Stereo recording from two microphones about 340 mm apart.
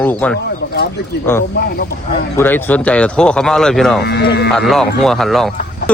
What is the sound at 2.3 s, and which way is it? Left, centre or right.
Speech, centre.